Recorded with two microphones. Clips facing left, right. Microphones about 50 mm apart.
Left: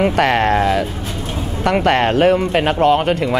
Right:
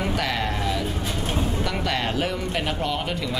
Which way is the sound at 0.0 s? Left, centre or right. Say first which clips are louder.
Left 11 dB; left.